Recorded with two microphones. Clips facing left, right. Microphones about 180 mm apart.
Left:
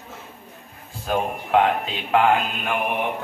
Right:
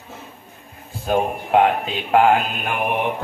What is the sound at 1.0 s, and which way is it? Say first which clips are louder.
Speech: right 4 dB; 20° right (ahead or behind).